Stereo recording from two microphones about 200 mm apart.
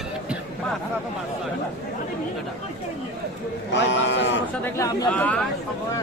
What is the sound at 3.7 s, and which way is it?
Speech, 60° left (ahead or behind).